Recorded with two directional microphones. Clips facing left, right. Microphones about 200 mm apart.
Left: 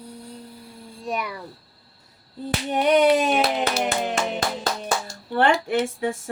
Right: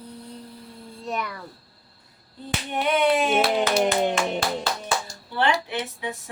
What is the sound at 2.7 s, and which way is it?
Speech, 40° left (ahead or behind).